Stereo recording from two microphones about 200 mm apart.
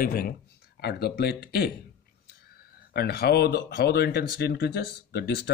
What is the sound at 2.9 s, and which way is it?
Speech, 55° left (ahead or behind).